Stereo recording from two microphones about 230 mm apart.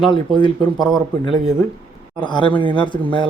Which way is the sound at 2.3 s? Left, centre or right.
Left.